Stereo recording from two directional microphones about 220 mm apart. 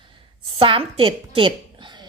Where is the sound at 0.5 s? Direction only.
25° right (ahead or behind).